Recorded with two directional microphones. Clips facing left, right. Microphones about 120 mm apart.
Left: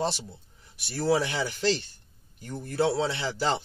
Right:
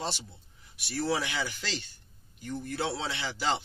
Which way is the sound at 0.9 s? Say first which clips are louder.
Left 5 dB; 40° left (ahead or behind).